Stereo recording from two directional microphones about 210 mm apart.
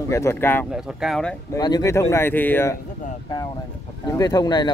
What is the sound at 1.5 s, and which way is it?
Speech, 20° left (ahead or behind).